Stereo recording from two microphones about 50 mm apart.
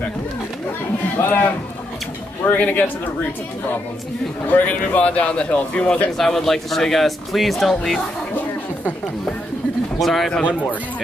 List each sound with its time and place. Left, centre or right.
1.1 s speech: left
2.5 s speech: left
4.6 s speech: left
6.1 s speech: centre
9.9 s speech: centre